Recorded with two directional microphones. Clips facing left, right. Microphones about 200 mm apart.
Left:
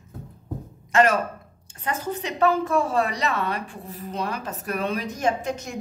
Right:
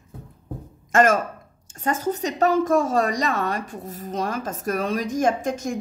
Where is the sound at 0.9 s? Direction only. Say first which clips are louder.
Right 1 dB; 45° right (ahead or behind).